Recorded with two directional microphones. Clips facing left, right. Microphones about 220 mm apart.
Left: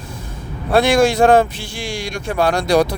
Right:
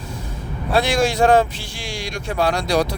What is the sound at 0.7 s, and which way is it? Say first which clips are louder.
Speech: left 5 dB; 55° left (ahead or behind).